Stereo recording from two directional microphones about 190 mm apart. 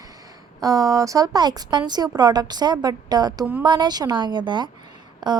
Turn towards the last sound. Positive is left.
turn(degrees=-20)  # may be behind; listen again after turning